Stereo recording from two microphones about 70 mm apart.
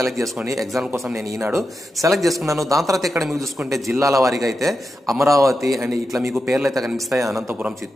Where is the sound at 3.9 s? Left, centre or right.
Right.